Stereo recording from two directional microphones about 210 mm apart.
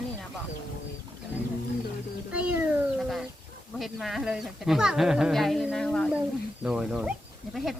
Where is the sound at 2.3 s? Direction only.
5° right (ahead or behind).